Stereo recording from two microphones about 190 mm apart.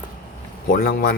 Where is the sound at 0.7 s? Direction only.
55° left (ahead or behind).